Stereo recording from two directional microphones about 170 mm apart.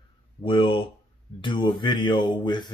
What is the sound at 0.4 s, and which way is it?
Speech, 30° left (ahead or behind).